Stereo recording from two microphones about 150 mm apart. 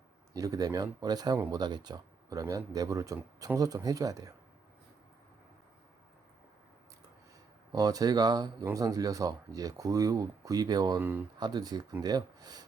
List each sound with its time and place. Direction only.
0.3 s speech: 25° right (ahead or behind)
7.7 s speech: 25° right (ahead or behind)